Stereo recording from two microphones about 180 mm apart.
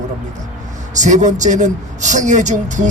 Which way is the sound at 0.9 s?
40° right (ahead or behind).